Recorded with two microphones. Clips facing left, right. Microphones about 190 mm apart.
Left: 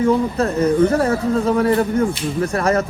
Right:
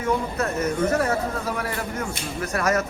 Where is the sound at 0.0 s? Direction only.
30° left (ahead or behind).